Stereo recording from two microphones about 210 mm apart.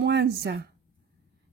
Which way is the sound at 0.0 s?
50° right (ahead or behind).